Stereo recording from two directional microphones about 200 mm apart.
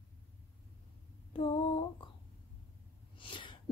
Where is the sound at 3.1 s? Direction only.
25° left (ahead or behind).